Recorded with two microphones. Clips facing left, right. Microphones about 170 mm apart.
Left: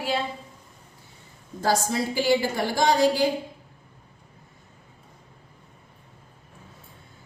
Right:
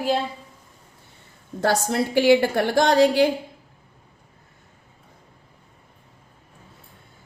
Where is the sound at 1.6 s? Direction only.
65° right (ahead or behind).